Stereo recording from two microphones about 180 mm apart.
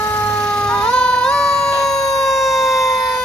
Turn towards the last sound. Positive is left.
turn(degrees=0)  # may be behind; listen again after turning